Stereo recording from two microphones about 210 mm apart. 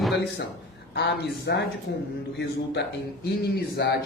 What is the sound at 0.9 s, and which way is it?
Speech, 55° left (ahead or behind).